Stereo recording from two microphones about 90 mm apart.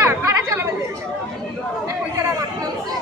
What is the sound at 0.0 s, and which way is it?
Chatter, 30° right (ahead or behind).